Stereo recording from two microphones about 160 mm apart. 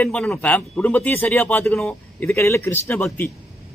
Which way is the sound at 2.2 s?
15° left (ahead or behind).